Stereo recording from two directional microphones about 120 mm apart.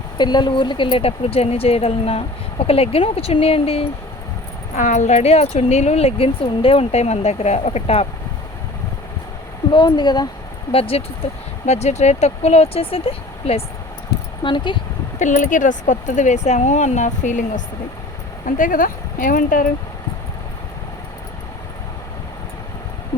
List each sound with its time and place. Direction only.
0.2 s speech: 35° left (ahead or behind); by 3.8 s 55° left (ahead or behind)
4.8 s speech: 80° left; by 8.0 s 60° left (ahead or behind)
9.7 s speech: 40° left (ahead or behind)
10.7 s speech: 50° left (ahead or behind)
11.6 s speech: 70° left (ahead or behind)
14.4 s speech: 40° left (ahead or behind)
15.2 s speech: 90° left